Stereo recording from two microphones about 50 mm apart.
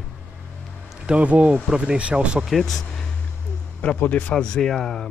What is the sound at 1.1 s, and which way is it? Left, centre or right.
Speech, right.